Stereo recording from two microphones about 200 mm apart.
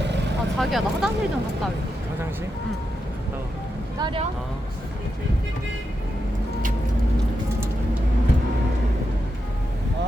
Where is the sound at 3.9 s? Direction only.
20° right (ahead or behind).